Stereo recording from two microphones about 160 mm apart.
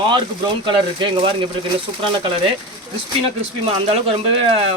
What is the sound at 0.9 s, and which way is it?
Speech, 30° right (ahead or behind).